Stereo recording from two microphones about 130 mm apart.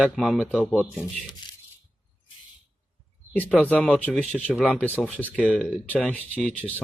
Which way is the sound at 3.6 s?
10° left (ahead or behind).